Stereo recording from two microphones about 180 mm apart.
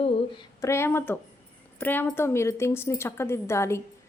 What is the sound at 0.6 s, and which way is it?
A woman's voice, 15° left (ahead or behind).